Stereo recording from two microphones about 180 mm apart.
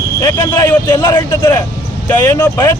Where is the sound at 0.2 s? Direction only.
20° left (ahead or behind).